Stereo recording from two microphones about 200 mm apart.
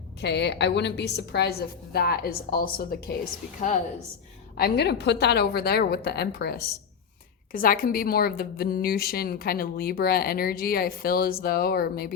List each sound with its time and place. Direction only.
0.2 s a woman's voice: 60° left (ahead or behind)
4.5 s a woman's voice: 55° left (ahead or behind)